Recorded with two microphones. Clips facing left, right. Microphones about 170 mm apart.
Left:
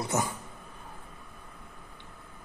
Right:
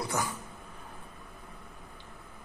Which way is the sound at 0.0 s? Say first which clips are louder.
Left 3 dB; 20° left (ahead or behind).